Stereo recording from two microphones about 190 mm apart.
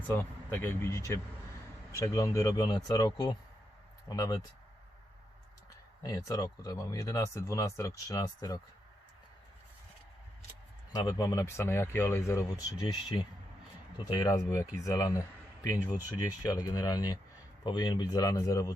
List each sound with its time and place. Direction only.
0.2 s speech: 10° left (ahead or behind)
6.0 s speech: 20° left (ahead or behind)
10.9 s speech: 20° left (ahead or behind)